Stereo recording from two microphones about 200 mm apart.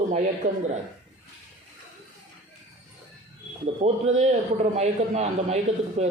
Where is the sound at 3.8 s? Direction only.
35° right (ahead or behind).